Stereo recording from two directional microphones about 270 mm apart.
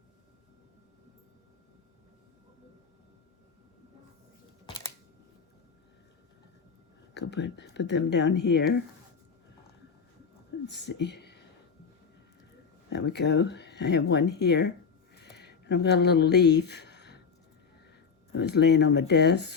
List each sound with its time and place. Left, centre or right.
7.1 s speech: left
10.7 s speech: left
12.9 s speech: left
15.2 s a sound: left
18.3 s speech: left